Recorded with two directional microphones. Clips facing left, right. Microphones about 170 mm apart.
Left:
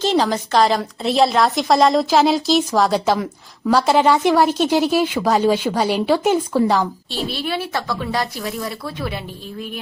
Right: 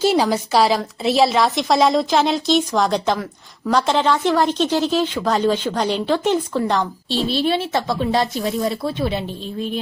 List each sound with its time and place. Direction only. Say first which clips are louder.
0.0 s a woman's voice: right 1 dB; 10° right (ahead or behind); by 6.8 s 5° left (ahead or behind)
7.3 s speech: right 5 dB; 25° right (ahead or behind)